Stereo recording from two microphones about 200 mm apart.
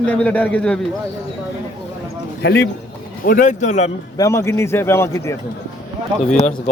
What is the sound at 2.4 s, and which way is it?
Speech, 55° left (ahead or behind).